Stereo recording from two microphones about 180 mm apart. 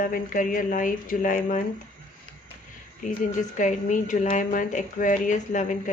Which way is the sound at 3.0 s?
45° left (ahead or behind).